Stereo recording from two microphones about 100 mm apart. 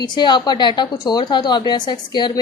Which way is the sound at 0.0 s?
50° left (ahead or behind).